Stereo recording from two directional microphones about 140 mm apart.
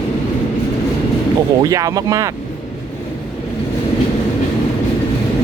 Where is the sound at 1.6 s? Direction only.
25° right (ahead or behind).